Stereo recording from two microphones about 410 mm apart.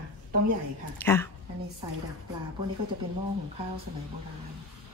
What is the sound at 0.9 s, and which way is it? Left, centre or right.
Speech, centre.